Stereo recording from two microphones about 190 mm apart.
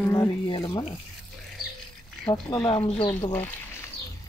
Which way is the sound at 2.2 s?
20° left (ahead or behind).